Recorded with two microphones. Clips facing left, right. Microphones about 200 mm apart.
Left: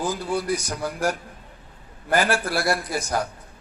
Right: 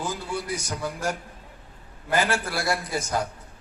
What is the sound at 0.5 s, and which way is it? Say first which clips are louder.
A man's voice: left 3 dB; 25° right (ahead or behind).